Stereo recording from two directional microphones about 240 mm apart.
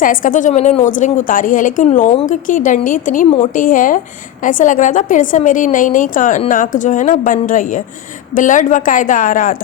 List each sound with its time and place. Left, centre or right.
0.0 s a woman's voice: left